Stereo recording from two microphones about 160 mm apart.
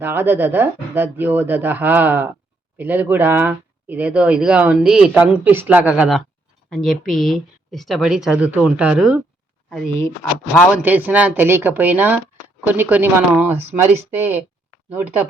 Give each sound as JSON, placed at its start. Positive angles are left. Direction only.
{"t": 0.0, "sound": "speech", "side_deg": -10}
{"t": 10.8, "sound": "speech", "side_deg": -10}
{"t": 13.6, "sound": "speech", "side_deg": -40}
{"t": 13.9, "sound": "speech", "side_deg": -15}